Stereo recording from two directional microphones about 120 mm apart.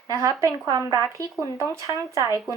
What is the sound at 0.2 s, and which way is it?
Speech, 30° right (ahead or behind).